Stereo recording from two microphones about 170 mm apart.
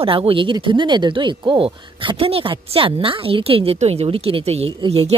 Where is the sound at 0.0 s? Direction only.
30° right (ahead or behind).